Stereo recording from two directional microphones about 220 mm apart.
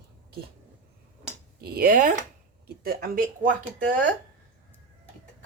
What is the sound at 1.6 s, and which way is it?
A woman's voice, 40° right (ahead or behind).